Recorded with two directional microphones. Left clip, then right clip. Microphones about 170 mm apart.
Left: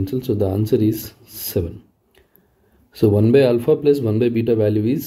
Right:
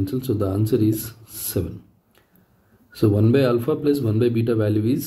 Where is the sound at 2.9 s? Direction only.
35° left (ahead or behind).